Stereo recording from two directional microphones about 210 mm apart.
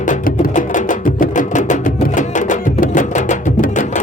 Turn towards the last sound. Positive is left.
turn(degrees=35)  # may be behind; listen again after turning